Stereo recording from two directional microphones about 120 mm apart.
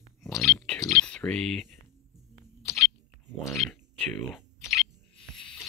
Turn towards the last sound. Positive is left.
turn(degrees=5)  # may be behind; listen again after turning